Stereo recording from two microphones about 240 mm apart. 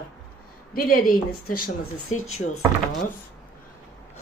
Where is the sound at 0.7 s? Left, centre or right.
Left.